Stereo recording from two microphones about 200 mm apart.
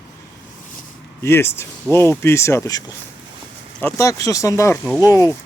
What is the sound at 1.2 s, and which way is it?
Speech, 10° left (ahead or behind).